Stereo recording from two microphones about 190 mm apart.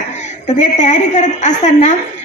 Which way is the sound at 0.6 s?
40° left (ahead or behind).